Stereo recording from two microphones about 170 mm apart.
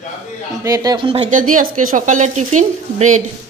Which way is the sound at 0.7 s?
20° right (ahead or behind).